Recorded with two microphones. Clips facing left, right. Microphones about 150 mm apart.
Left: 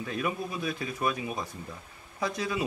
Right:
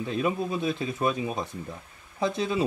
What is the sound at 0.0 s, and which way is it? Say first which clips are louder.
Speech: right 5 dB; 25° right (ahead or behind).